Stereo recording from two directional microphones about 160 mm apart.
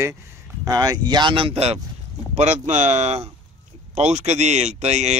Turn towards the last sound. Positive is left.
turn(degrees=-45)  # may be behind; listen again after turning